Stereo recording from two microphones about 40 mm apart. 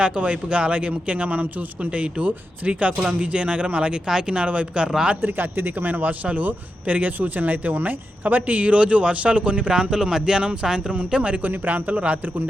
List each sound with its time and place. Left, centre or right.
0.0 s speech: right
4.0 s speech: centre
4.4 s speech: right
5.2 s a man's voice: right
5.9 s speech: right
11.4 s speech: right